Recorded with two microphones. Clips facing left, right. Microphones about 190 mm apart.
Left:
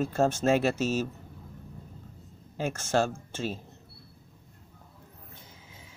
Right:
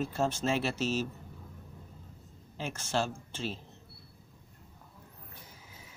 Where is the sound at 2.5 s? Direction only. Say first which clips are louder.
Left 6 dB; 45° left (ahead or behind).